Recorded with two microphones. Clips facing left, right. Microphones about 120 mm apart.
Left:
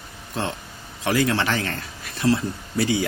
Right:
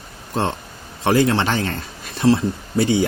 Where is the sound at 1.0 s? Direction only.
30° right (ahead or behind).